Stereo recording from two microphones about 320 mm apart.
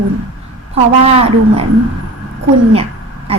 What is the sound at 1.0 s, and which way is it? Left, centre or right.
Speech, centre.